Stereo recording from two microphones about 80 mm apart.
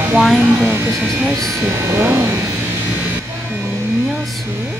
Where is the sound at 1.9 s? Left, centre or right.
Right.